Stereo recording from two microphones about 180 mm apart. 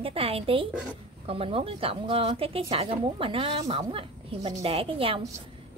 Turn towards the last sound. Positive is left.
turn(degrees=-30)  # may be behind; listen again after turning